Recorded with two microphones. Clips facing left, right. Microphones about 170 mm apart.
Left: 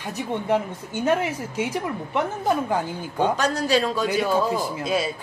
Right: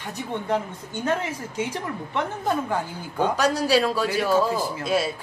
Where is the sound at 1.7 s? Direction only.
10° left (ahead or behind).